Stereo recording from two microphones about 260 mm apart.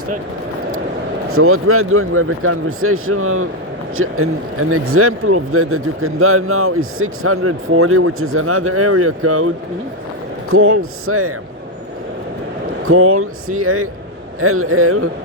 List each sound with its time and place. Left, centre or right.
1.3 s speech: right
10.5 s speech: right
12.8 s speech: right